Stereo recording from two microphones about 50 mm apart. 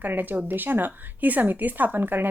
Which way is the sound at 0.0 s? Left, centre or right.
Right.